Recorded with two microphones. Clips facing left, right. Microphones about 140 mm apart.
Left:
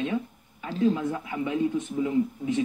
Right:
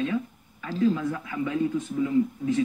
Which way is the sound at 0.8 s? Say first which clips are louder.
Even; 35° left (ahead or behind).